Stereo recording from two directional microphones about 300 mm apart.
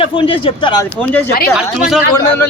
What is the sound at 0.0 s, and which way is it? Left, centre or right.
A man's voice, centre.